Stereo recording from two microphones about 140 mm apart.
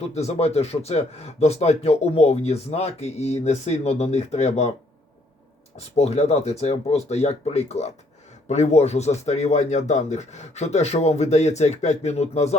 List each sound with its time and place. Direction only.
0.0 s speech: 50° left (ahead or behind)
6.0 s speech: 50° left (ahead or behind)